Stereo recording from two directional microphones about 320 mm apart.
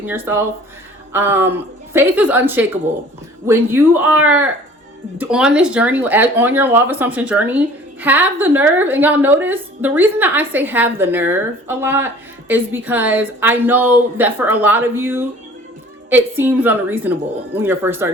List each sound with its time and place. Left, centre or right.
0.0 s a woman's voice: centre